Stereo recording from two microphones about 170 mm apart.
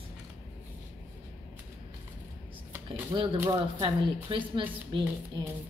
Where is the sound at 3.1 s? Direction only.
25° right (ahead or behind).